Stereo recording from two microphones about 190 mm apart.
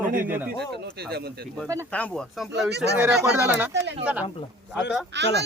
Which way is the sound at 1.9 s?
5° left (ahead or behind).